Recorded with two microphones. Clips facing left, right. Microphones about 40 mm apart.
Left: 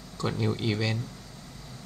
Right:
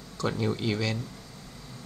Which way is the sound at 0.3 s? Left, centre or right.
Centre.